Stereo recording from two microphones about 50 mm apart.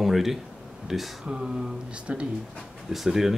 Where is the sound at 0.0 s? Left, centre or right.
Centre.